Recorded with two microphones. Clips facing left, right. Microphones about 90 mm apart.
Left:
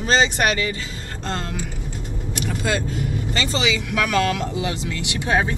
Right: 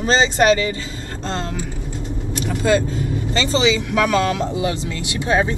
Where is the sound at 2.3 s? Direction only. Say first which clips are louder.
Right 6 dB; 30° right (ahead or behind).